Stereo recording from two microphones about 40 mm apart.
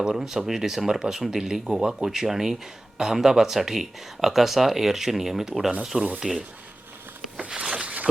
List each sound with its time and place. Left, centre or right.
0.0 s speech: centre
7.3 s zipper: right